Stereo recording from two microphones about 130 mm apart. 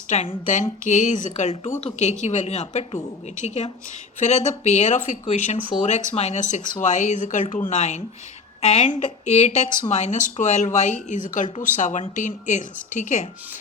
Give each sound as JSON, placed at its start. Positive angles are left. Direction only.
{"t": 0.1, "sound": "a woman's voice", "side_deg": 60}
{"t": 0.4, "sound": "a woman's voice", "side_deg": 70}
{"t": 9.9, "sound": "speech", "side_deg": 65}